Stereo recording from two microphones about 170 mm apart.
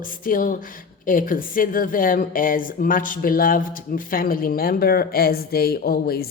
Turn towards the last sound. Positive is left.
turn(degrees=65)  # may be behind; listen again after turning